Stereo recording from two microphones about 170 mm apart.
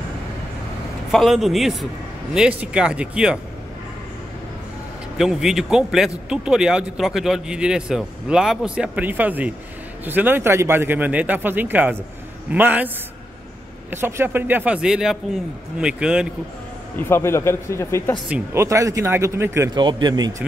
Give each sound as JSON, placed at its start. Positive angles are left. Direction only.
{"t": 1.1, "sound": "speech", "side_deg": 0}
{"t": 5.1, "sound": "speech", "side_deg": 0}
{"t": 16.9, "sound": "a man's voice", "side_deg": 15}
{"t": 18.3, "sound": "speech", "side_deg": -15}
{"t": 19.8, "sound": "speech", "side_deg": -25}